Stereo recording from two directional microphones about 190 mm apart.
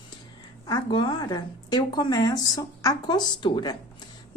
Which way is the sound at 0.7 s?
25° left (ahead or behind).